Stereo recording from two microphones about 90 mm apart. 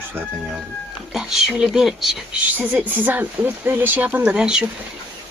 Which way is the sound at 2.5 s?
20° right (ahead or behind).